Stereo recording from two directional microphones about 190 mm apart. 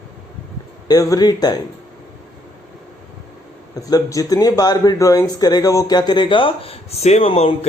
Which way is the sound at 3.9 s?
20° left (ahead or behind).